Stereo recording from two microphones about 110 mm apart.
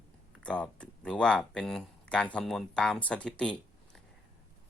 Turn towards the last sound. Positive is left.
turn(degrees=10)  # may be behind; listen again after turning